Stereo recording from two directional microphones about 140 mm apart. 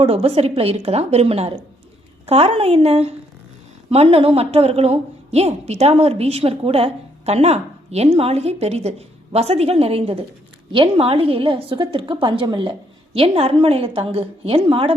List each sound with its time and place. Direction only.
0.0 s a woman's voice: 45° right (ahead or behind)